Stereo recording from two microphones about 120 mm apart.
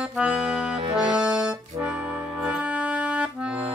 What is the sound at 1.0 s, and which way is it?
Music, 10° right (ahead or behind).